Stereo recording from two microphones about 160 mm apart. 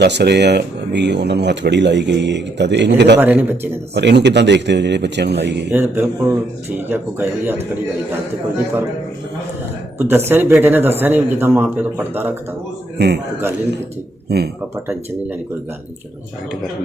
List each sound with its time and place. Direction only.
0.0 s speech: 90° right
3.2 s speech: 10° right (ahead or behind)
3.9 s speech: 90° right
5.7 s speech: 10° right (ahead or behind)
10.0 s speech: 15° right (ahead or behind)
14.3 s speech: 85° right